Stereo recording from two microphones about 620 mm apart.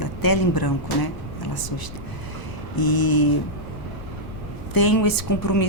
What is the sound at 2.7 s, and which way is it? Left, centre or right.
Speech, left.